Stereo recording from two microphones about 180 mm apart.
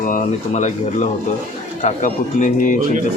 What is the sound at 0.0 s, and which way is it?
A man's voice, 45° left (ahead or behind).